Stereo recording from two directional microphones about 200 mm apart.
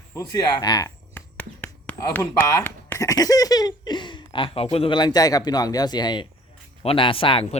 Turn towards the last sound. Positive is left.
turn(degrees=25)  # may be behind; listen again after turning